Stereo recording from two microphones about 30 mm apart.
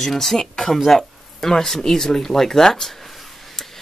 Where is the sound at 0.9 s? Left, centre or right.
Centre.